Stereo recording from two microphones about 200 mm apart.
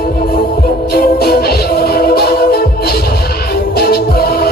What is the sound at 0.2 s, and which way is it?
Music, 50° left (ahead or behind).